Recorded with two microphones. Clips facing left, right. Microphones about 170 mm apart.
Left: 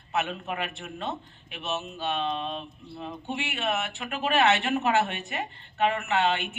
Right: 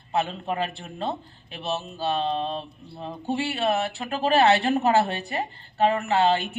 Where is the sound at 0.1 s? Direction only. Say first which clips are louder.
Right 4 dB; 30° right (ahead or behind).